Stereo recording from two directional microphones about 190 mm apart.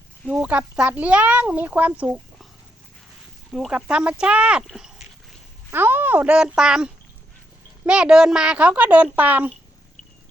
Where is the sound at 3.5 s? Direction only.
5° right (ahead or behind).